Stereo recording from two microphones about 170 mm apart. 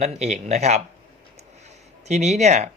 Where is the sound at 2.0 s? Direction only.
40° right (ahead or behind).